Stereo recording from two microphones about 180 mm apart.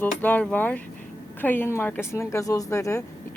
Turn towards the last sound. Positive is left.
turn(degrees=15)  # may be behind; listen again after turning